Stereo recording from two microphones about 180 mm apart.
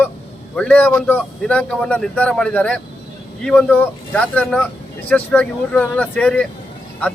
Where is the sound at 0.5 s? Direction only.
5° left (ahead or behind).